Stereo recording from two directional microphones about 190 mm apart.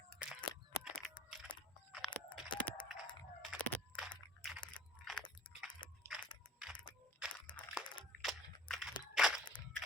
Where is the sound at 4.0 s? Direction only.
Centre (ahead or behind).